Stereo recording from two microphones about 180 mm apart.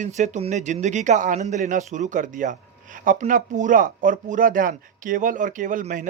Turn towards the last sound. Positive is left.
turn(degrees=-45)  # may be behind; listen again after turning